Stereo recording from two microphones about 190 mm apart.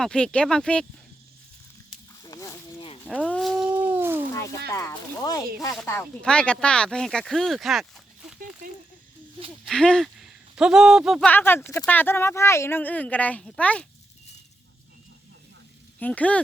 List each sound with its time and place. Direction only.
0.0 s speech: 5° left (ahead or behind)
2.2 s a sound: 20° left (ahead or behind)
3.0 s cat: 5° left (ahead or behind); by 4.2 s 10° right (ahead or behind)
4.7 s speech: 15° left (ahead or behind); by 8.4 s centre (ahead or behind)
9.6 s speech: 5° left (ahead or behind)
11.3 s speech: 10° left (ahead or behind)
16.0 s speech: 10° left (ahead or behind)